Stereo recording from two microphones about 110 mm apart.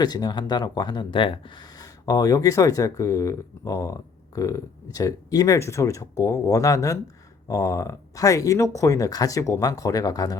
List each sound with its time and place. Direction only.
0.0 s speech: 40° left (ahead or behind)